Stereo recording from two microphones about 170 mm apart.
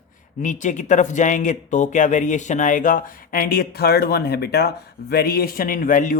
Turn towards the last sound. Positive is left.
turn(degrees=50)  # may be behind; listen again after turning